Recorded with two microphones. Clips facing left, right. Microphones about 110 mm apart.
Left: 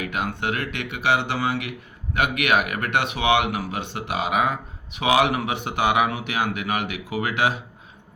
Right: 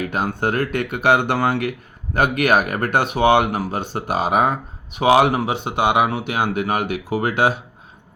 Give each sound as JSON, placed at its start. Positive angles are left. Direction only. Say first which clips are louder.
{"t": 0.0, "sound": "speech", "louder": "right 5 dB", "side_deg": -35}
{"t": 2.1, "sound": "speech", "louder": "right 4 dB", "side_deg": -40}